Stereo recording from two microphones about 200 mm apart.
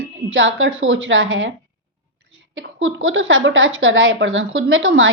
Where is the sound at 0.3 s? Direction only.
70° right (ahead or behind).